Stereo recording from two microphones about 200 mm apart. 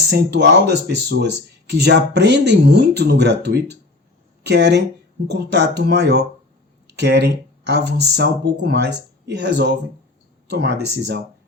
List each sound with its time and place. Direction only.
0.1 s speech: 55° right (ahead or behind)